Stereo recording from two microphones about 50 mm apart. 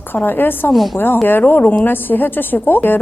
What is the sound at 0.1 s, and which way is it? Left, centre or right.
A woman's voice, left.